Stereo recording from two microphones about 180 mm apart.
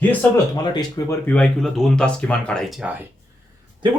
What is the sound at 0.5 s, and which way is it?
Speech, 25° left (ahead or behind).